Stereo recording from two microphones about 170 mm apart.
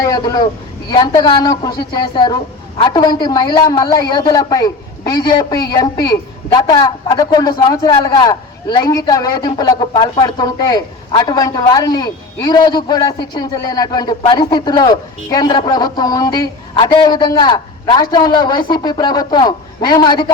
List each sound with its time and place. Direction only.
0.0 s a man's voice: 25° left (ahead or behind)